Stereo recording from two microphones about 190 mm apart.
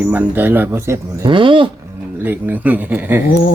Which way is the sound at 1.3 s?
25° right (ahead or behind).